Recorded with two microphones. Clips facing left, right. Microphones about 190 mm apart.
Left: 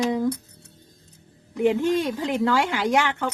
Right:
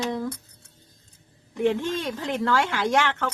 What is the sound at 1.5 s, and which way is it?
Speech, 15° left (ahead or behind).